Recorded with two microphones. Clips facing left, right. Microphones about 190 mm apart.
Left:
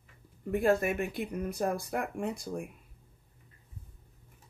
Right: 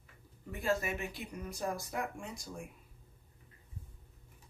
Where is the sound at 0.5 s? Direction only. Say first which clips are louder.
Left 8 dB; 55° left (ahead or behind).